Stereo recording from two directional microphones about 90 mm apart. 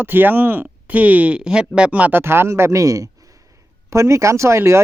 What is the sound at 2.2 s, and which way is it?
Speech, 25° right (ahead or behind).